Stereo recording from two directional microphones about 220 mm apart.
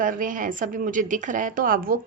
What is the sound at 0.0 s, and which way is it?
A woman's voice, 40° right (ahead or behind).